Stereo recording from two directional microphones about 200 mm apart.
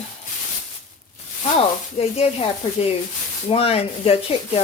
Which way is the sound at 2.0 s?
30° left (ahead or behind).